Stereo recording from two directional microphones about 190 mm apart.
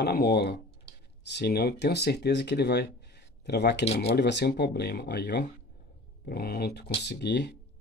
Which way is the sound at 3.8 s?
35° left (ahead or behind).